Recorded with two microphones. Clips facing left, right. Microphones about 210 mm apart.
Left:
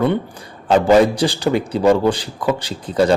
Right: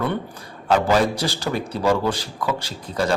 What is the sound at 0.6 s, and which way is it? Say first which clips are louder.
A man's voice: left 6 dB; 20° left (ahead or behind).